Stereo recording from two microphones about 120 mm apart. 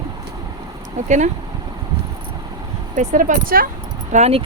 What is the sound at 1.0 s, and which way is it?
Speech, 80° right.